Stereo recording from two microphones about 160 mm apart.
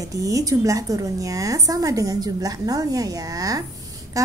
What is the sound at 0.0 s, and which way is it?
A woman's voice, 20° right (ahead or behind).